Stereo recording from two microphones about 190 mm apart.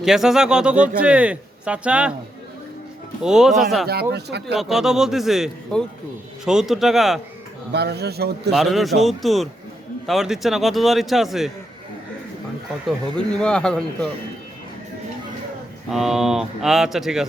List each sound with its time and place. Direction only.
0.0 s a man's voice: centre (ahead or behind)
3.2 s a man's voice: 5° right (ahead or behind)
4.1 s a man's voice: 60° right (ahead or behind)
4.5 s a man's voice: centre (ahead or behind)
7.7 s a man's voice: 60° right (ahead or behind)
8.5 s a man's voice: centre (ahead or behind)
13.1 s a man's voice: 5° left (ahead or behind)
15.9 s a man's voice: centre (ahead or behind)